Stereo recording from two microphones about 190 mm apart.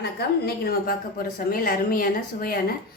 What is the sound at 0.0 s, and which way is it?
A woman's voice, 55° left (ahead or behind).